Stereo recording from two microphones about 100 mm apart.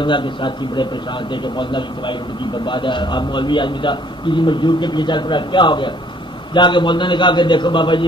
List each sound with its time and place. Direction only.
0.0 s a man's voice: 55° left (ahead or behind)